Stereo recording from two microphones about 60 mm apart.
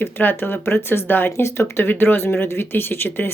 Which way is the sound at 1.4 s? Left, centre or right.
Left.